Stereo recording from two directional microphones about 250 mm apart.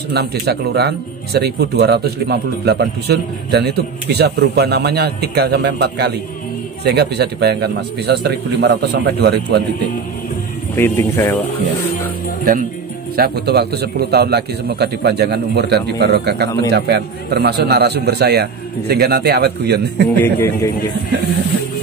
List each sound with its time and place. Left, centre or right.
0.1 s speech: right
10.8 s a man's voice: centre
13.1 s speech: right
20.2 s a man's voice: centre